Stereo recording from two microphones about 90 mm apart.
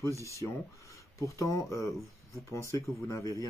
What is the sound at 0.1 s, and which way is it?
Speech, 35° right (ahead or behind).